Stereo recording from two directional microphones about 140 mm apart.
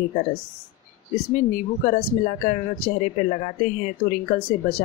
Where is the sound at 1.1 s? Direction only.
70° left (ahead or behind).